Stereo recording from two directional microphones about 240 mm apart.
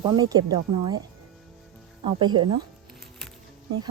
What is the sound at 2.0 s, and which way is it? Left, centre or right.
Speech, centre.